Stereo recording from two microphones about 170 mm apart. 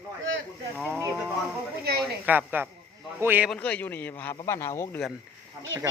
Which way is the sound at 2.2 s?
10° right (ahead or behind).